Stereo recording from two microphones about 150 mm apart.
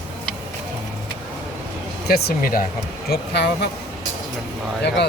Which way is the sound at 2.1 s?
80° left.